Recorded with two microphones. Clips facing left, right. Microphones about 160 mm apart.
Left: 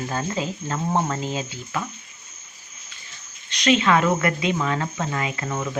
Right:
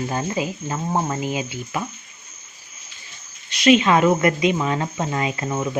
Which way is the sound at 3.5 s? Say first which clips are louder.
Right 4 dB; 10° right (ahead or behind).